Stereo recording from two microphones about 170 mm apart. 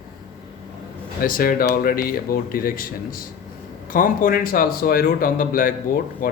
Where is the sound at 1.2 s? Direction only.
60° left (ahead or behind).